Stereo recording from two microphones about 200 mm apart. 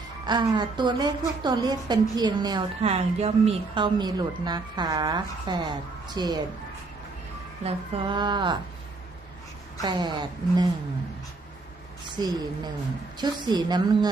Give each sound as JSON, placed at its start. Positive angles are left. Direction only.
{"t": 0.3, "sound": "a woman's voice", "side_deg": -20}
{"t": 8.1, "sound": "a woman's voice", "side_deg": -20}
{"t": 9.8, "sound": "a woman's voice", "side_deg": -20}
{"t": 12.0, "sound": "a woman's voice", "side_deg": -20}